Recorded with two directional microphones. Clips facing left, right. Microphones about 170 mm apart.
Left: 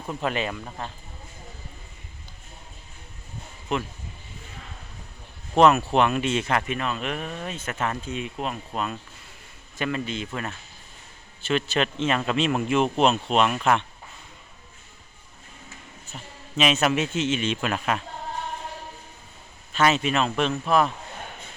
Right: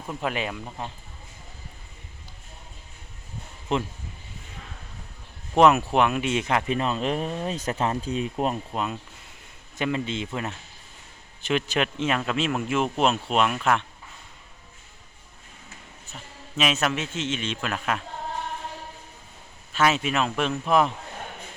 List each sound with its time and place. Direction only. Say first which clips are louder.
0.2 s speech: left 1 dB; 10° right (ahead or behind)
3.7 s speech: right 2 dB; 25° right (ahead or behind)
5.5 s speech: even; 15° right (ahead or behind)
6.7 s speech: right 3 dB; 30° right (ahead or behind)
8.7 s speech: even; 20° right (ahead or behind); by 13.8 s centre (ahead or behind)
16.6 s speech: left 3 dB; centre (ahead or behind)
16.9 s a man's voice: left 5 dB; 10° left (ahead or behind)
19.7 s speech: left 1 dB; 5° right (ahead or behind)
20.7 s speech: right 1 dB; 15° right (ahead or behind)